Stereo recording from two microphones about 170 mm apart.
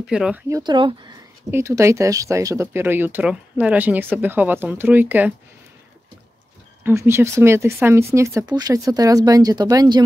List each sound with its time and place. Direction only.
0.0 s speech: 5° right (ahead or behind)
0.5 s speech: 20° right (ahead or behind)
1.5 s speech: 15° right (ahead or behind)
6.8 s speech: 15° right (ahead or behind)